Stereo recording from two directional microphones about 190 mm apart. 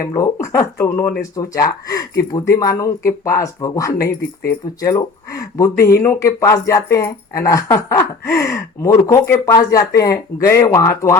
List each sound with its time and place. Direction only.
0.0 s speech: 15° left (ahead or behind)
3.9 s speech: 55° left (ahead or behind)
4.8 s speech: 20° left (ahead or behind)